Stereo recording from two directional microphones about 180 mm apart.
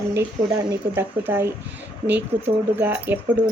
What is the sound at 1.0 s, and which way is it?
Speech, 10° right (ahead or behind).